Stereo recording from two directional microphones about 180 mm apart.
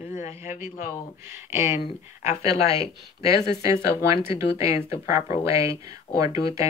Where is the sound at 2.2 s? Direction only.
35° left (ahead or behind).